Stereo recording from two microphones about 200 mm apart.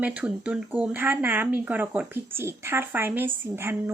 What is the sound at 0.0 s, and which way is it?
Speech, 5° right (ahead or behind).